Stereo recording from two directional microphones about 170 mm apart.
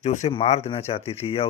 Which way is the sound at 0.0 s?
45° left (ahead or behind).